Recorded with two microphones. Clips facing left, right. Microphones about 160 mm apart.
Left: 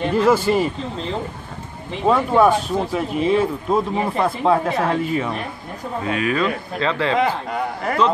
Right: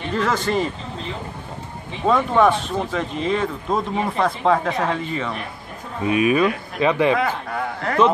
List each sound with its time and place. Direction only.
0.1 s speech: 10° left (ahead or behind)
2.0 s speech: 10° left (ahead or behind)
6.0 s speech: 15° right (ahead or behind)
7.2 s speech: 15° left (ahead or behind)